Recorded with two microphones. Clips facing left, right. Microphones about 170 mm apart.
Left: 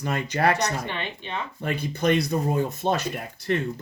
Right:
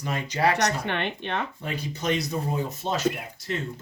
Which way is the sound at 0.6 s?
60° right (ahead or behind).